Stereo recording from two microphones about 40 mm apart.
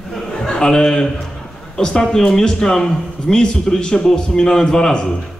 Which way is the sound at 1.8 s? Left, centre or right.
Centre.